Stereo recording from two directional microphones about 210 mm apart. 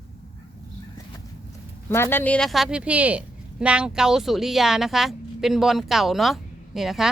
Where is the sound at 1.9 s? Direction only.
10° left (ahead or behind).